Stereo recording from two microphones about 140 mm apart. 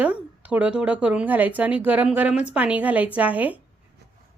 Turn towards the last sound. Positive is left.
turn(degrees=-10)  # may be behind; listen again after turning